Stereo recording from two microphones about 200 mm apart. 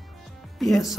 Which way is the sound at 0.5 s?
Centre (ahead or behind).